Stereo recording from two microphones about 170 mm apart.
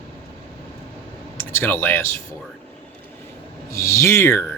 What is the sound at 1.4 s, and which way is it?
Speech, 15° left (ahead or behind).